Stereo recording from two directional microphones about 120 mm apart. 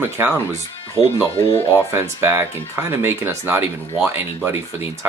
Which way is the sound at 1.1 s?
20° left (ahead or behind).